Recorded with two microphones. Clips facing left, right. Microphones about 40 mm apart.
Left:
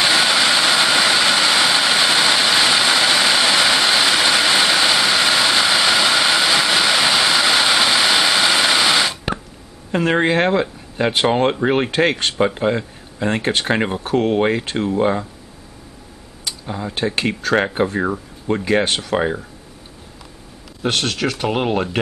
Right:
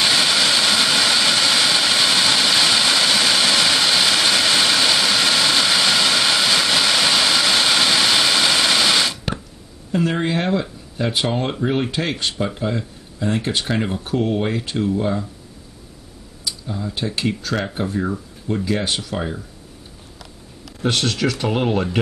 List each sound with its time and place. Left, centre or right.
0.0 s vehicle: centre
9.9 s speech: left
16.4 s speech: left
20.9 s speech: left